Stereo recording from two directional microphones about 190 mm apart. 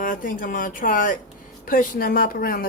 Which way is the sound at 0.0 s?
45° left (ahead or behind).